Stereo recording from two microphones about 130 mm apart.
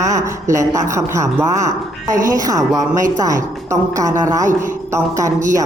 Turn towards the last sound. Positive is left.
turn(degrees=-25)  # may be behind; listen again after turning